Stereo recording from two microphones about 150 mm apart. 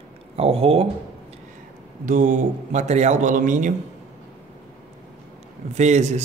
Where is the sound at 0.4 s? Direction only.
40° right (ahead or behind).